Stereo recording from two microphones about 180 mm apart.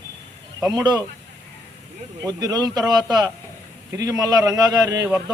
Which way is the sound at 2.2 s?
20° right (ahead or behind).